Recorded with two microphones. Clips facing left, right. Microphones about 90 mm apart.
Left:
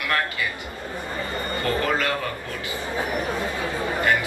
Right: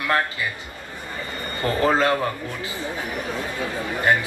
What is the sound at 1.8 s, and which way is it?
Speech, 30° right (ahead or behind).